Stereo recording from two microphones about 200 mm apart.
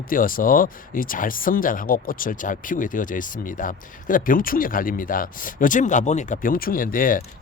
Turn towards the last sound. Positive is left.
turn(degrees=45)  # may be behind; listen again after turning